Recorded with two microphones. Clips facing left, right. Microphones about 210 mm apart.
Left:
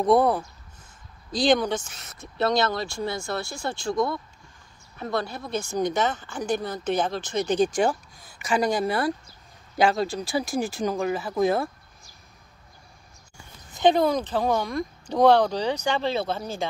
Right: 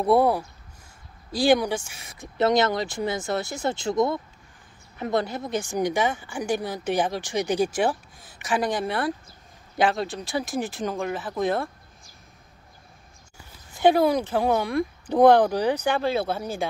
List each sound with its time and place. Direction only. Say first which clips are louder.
0.0 s speech: even; 10° right (ahead or behind)
13.7 s speech: right 1 dB; 10° right (ahead or behind)